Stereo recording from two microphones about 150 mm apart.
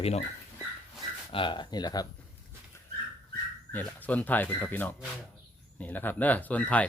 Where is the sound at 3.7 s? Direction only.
10° left (ahead or behind).